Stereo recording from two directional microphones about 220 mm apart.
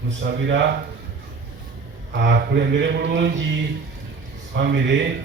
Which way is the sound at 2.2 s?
50° right (ahead or behind).